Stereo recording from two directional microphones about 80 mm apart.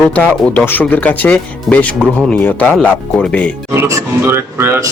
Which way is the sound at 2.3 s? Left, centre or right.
Left.